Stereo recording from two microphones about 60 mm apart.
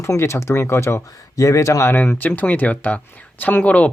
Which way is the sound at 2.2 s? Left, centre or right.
Left.